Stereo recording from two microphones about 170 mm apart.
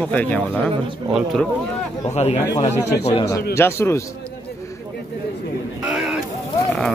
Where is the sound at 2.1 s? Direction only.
40° left (ahead or behind).